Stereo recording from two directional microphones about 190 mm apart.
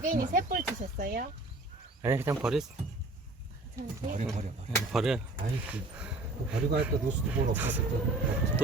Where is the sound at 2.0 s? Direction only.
10° right (ahead or behind).